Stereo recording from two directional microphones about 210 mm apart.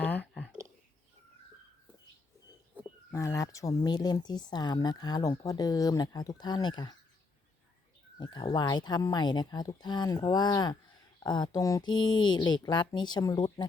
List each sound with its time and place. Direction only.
0.0 s a sound: 5° left (ahead or behind)
3.1 s speech: 15° left (ahead or behind)
8.2 s speech: 20° left (ahead or behind)